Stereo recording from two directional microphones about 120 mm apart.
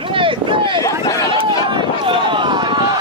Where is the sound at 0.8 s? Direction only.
25° left (ahead or behind).